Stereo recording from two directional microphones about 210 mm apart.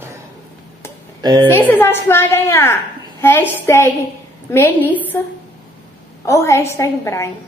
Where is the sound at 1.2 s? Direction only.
20° right (ahead or behind).